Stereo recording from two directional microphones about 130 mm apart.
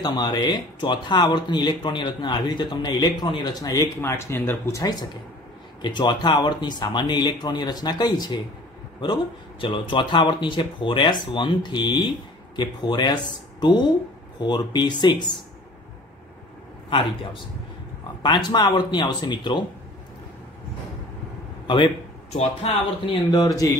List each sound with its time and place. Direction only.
0.0 s speech: 35° left (ahead or behind)
5.8 s speech: 35° left (ahead or behind)
16.9 s speech: 40° left (ahead or behind)
21.6 s a man's voice: 40° left (ahead or behind)
22.3 s speech: 55° left (ahead or behind)
23.3 s speech: 30° left (ahead or behind)